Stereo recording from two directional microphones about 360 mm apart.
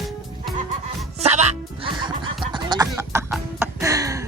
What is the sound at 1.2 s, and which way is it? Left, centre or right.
Music, centre.